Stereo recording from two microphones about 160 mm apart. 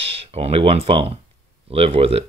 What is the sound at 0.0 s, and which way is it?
Speech, 40° right (ahead or behind).